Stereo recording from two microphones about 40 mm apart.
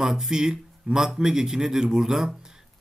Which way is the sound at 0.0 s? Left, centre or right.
Centre.